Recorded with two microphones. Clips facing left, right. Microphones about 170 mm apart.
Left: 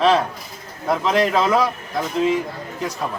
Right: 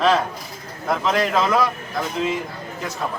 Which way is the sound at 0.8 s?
5° left (ahead or behind).